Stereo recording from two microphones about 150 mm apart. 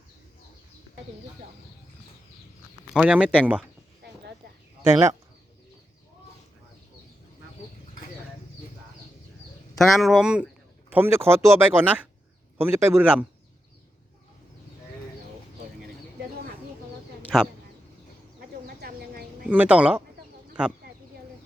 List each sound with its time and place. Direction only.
2.9 s speech: 5° right (ahead or behind)
4.8 s speech: 15° right (ahead or behind)
9.7 s speech: centre (ahead or behind)
17.3 s speech: centre (ahead or behind)
18.8 s a sound: 90° right
19.5 s speech: 10° right (ahead or behind)